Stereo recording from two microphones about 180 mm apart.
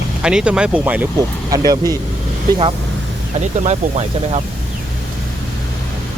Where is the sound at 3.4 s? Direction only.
40° right (ahead or behind).